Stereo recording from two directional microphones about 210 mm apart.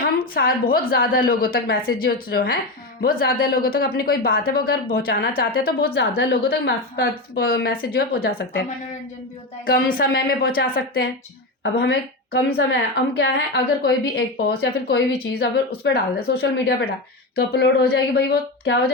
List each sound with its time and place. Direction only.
0.0 s a woman's voice: 45° left (ahead or behind)
9.6 s a woman's voice: 45° left (ahead or behind)